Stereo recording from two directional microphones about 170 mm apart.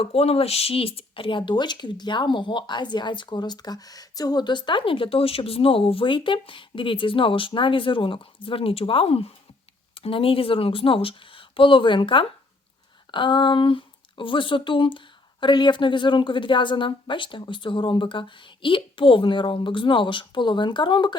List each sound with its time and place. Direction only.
0.0 s speech: 35° left (ahead or behind)